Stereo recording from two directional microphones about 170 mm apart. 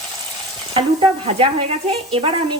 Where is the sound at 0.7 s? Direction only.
30° right (ahead or behind).